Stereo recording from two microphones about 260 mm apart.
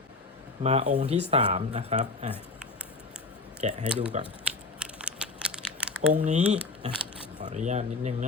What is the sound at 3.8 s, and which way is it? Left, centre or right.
Speech, centre.